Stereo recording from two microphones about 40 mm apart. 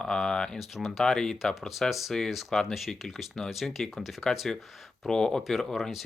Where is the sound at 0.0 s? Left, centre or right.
Centre.